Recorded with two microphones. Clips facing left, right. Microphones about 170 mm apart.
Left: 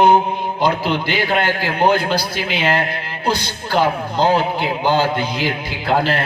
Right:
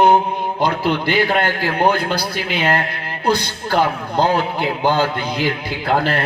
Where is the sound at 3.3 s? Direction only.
55° right (ahead or behind).